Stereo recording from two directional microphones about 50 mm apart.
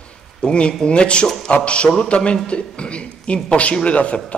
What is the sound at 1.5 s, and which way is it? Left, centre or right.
A man's voice, left.